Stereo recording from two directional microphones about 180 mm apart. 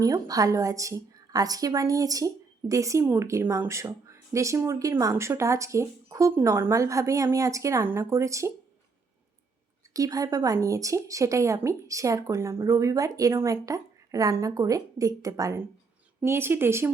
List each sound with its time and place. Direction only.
0.0 s a woman's voice: 20° right (ahead or behind)
9.9 s a woman's voice: 20° right (ahead or behind)